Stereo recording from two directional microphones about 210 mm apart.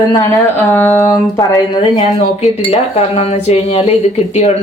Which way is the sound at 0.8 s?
10° left (ahead or behind).